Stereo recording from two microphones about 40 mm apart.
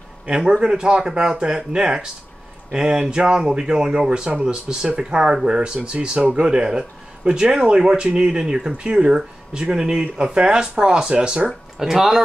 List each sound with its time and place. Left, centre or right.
0.3 s speech: right
11.8 s speech: centre